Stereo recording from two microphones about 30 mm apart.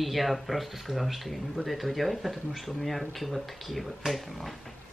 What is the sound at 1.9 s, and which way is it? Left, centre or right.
Speech, centre.